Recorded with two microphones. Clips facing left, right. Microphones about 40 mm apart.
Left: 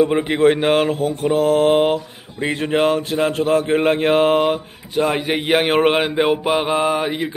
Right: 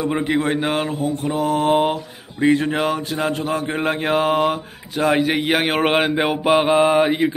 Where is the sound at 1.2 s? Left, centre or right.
Left.